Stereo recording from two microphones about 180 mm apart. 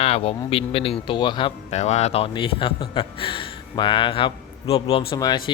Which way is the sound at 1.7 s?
40° left (ahead or behind).